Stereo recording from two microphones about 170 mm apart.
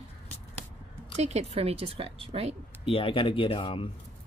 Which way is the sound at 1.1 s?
40° right (ahead or behind).